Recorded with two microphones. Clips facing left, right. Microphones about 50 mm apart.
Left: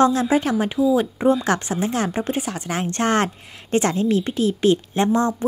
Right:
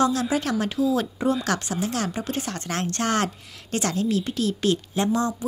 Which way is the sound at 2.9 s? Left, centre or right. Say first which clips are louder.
Left 5 dB; left.